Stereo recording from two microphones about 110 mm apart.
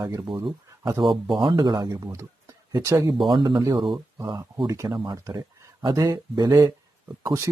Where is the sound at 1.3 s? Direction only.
45° right (ahead or behind).